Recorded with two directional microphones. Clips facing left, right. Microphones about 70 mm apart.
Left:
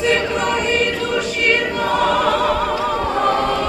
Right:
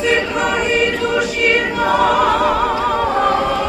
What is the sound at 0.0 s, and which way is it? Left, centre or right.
Choir, centre.